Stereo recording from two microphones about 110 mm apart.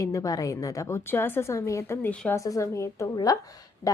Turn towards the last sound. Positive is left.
turn(degrees=30)  # may be behind; listen again after turning